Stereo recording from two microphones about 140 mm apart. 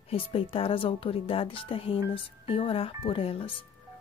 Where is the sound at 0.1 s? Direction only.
40° left (ahead or behind).